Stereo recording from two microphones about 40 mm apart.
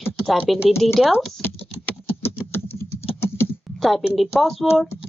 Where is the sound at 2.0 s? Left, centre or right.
Left.